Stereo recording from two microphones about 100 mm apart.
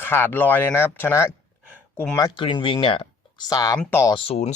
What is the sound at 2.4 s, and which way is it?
Speech, 55° left (ahead or behind).